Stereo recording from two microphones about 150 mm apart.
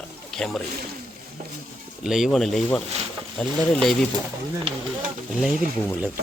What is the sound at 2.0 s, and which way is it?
A man's voice, 5° right (ahead or behind).